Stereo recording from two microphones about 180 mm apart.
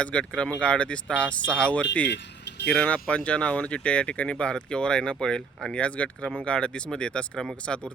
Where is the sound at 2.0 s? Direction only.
75° left (ahead or behind).